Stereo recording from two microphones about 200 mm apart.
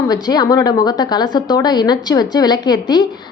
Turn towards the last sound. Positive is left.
turn(degrees=20)  # may be behind; listen again after turning